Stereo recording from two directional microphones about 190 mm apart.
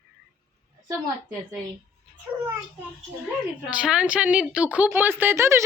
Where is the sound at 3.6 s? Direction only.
5° right (ahead or behind).